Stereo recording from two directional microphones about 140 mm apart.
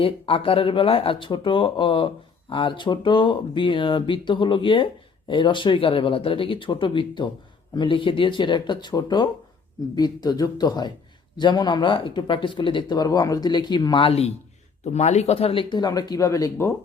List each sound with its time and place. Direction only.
0.0 s speech: 40° left (ahead or behind)
14.8 s speech: 50° left (ahead or behind); by 16.7 s 20° left (ahead or behind)